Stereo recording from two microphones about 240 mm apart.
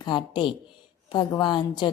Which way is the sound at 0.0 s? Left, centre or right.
Centre.